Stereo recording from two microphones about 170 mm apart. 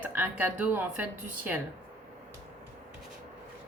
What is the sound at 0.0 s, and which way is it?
Speech, 10° right (ahead or behind).